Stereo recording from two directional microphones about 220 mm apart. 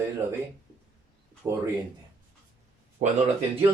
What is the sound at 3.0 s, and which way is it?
Speech, 35° right (ahead or behind).